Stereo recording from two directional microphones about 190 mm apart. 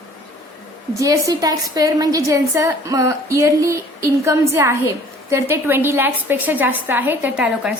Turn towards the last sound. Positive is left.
turn(degrees=-5)  # may be behind; listen again after turning